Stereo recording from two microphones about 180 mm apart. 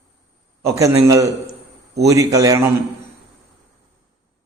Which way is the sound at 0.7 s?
20° right (ahead or behind).